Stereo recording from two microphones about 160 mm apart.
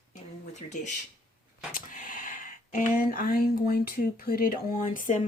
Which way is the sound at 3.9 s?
65° left (ahead or behind).